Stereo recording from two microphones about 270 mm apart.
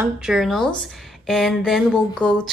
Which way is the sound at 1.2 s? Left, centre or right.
Centre.